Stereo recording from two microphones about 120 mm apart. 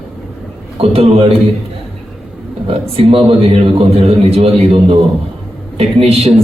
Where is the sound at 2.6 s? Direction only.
50° right (ahead or behind).